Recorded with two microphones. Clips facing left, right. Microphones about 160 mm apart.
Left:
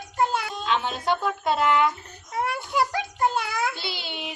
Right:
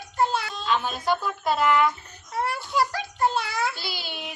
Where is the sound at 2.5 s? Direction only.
20° left (ahead or behind).